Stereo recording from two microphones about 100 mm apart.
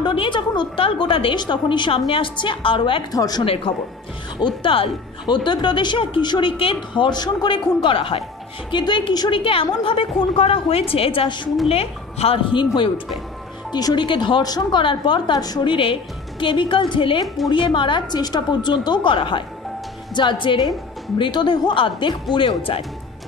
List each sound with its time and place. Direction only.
0.0 s a woman's voice: 55° left (ahead or behind)
3.1 s speech: 40° left (ahead or behind)
3.4 s a woman's voice: 65° left (ahead or behind)
5.3 s a woman's voice: 50° left (ahead or behind)
7.1 s a woman's voice: 45° left (ahead or behind); by 8.2 s 60° left (ahead or behind)
8.7 s a woman's voice: 50° left (ahead or behind)
9.3 s a woman's voice: 65° left (ahead or behind)
11.7 s a woman's voice: 80° left
12.5 s a woman's voice: 60° left (ahead or behind)
13.7 s a woman's voice: 45° left (ahead or behind)
15.6 s a woman's voice: 60° left (ahead or behind)